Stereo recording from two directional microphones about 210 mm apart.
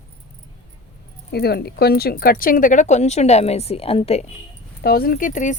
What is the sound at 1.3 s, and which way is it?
Speech, 50° left (ahead or behind).